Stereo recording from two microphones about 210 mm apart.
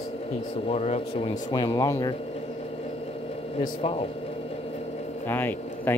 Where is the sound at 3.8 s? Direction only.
25° left (ahead or behind).